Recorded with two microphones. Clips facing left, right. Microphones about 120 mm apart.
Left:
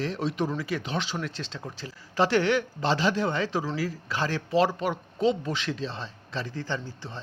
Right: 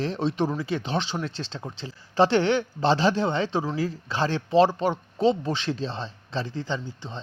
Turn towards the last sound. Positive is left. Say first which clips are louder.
# right 2 dB
turn(degrees=-20)  # may be behind; listen again after turning